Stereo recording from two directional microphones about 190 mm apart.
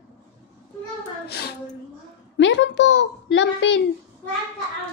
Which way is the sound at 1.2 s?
60° left (ahead or behind).